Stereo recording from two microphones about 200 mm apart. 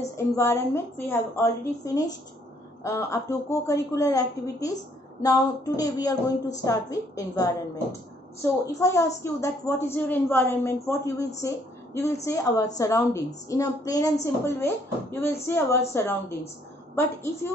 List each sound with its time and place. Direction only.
0.0 s a woman's voice: 15° left (ahead or behind)